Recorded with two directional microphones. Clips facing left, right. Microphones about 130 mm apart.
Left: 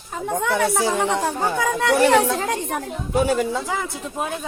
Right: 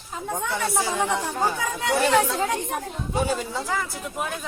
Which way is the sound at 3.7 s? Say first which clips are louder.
Left 2 dB; 20° left (ahead or behind).